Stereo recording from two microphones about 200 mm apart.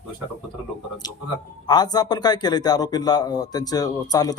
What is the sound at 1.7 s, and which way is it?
Speech, 20° left (ahead or behind).